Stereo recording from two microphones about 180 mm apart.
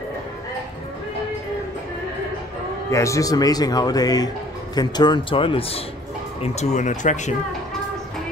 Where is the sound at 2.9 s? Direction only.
15° left (ahead or behind); by 7.4 s 40° left (ahead or behind).